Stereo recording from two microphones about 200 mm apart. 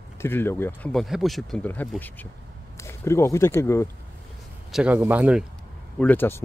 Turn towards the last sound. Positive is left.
turn(degrees=10)  # may be behind; listen again after turning